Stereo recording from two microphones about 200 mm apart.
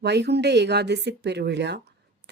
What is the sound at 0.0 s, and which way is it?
Speech, 60° right (ahead or behind).